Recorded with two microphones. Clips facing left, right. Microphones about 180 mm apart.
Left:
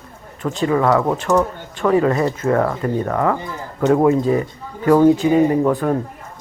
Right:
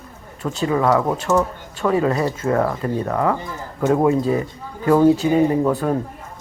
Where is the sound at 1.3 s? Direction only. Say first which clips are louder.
Left 2 dB; 5° right (ahead or behind).